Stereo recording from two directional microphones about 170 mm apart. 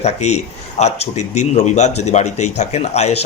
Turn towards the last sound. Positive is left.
turn(degrees=40)  # may be behind; listen again after turning